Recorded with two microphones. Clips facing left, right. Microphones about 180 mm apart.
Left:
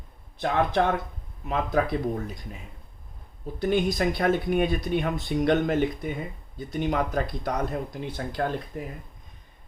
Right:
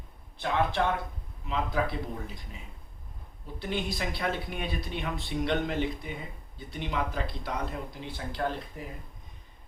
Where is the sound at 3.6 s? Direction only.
45° left (ahead or behind).